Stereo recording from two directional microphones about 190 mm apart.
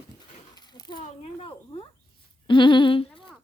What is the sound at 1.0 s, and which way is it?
Speech, 30° left (ahead or behind).